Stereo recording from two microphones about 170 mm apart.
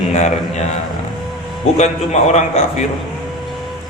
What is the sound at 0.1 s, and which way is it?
Speech, 40° left (ahead or behind).